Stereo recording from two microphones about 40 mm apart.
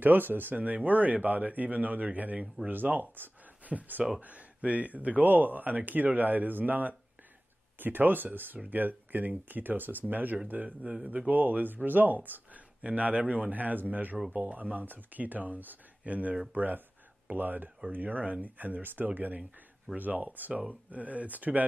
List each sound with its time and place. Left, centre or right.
0.0 s speech: right
0.8 s speech: right
2.4 s speech: right
2.7 s speech: right
19.0 s speech: right